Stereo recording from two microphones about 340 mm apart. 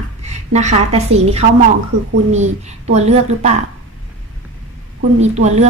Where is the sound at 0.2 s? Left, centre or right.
Centre.